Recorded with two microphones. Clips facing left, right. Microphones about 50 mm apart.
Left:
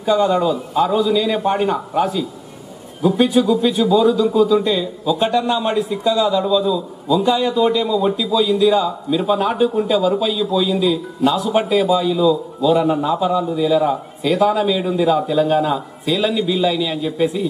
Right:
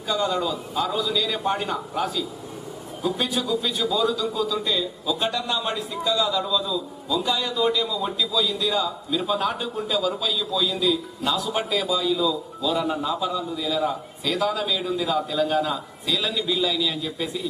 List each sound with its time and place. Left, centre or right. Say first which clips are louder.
0.0 s speech: left 9 dB; left